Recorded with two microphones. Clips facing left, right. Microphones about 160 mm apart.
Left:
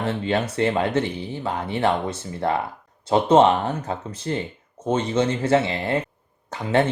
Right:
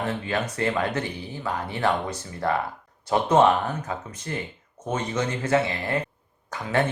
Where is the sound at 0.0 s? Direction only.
30° left (ahead or behind).